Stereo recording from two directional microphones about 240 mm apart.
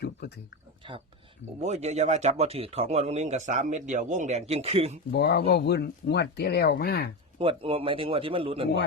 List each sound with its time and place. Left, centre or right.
1.6 s speech: right
5.1 s speech: left
7.3 s speech: right